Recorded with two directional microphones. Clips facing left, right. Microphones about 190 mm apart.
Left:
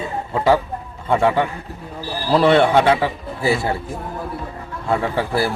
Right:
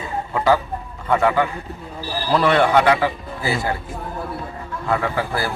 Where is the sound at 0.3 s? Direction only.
25° left (ahead or behind).